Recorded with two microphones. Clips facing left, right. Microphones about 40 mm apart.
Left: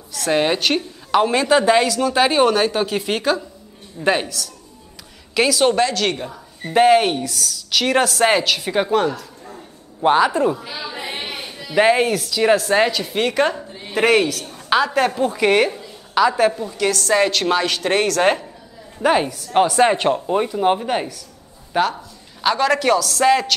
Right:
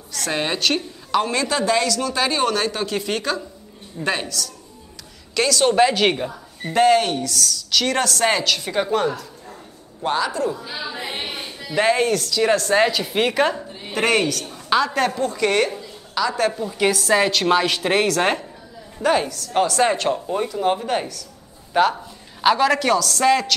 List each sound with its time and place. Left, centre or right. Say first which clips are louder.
0.3 s a woman's voice: left 4 dB; centre
5.8 s speech: right 2 dB; centre
6.7 s a woman's voice: left 3 dB; centre
10.0 s a man's voice: left 6 dB; left
11.7 s a woman's voice: left 3 dB; centre
16.7 s a woman's voice: right 1 dB; centre
17.0 s a man's voice: left 3 dB; centre
18.9 s a woman's voice: left 2 dB; centre
21.7 s a man's voice: right 2 dB; centre